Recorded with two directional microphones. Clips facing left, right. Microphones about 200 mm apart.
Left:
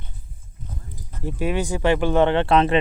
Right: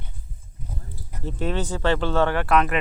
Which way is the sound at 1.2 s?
10° left (ahead or behind).